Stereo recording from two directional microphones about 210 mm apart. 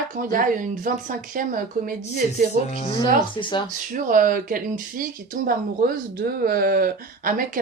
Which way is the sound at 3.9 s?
40° right (ahead or behind).